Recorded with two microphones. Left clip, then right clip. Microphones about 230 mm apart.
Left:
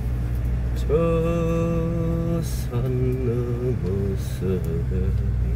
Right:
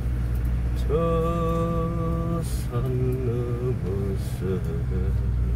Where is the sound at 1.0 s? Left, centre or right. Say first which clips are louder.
Left 1 dB; centre.